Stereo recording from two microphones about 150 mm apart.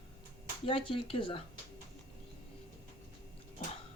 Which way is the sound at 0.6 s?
35° left (ahead or behind).